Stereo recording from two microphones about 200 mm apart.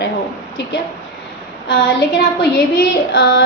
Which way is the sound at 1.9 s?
55° left (ahead or behind).